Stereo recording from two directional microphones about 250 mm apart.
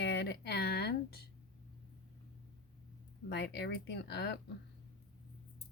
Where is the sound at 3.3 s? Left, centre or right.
Left.